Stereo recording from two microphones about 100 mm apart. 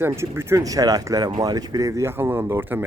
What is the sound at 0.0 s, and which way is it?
Speech, 25° right (ahead or behind).